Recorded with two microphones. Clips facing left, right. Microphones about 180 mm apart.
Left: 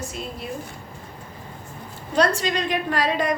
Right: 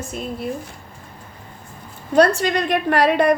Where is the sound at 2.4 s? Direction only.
65° right (ahead or behind).